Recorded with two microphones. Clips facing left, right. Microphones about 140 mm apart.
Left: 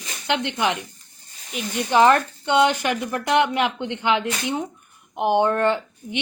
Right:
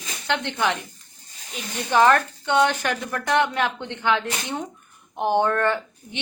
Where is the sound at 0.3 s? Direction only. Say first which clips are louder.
Left 1 dB; 15° left (ahead or behind).